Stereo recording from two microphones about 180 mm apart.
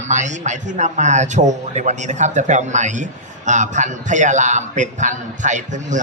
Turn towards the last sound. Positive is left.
turn(degrees=-45)  # may be behind; listen again after turning